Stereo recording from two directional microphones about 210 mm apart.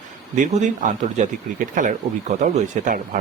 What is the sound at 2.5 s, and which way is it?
Speech, 35° right (ahead or behind).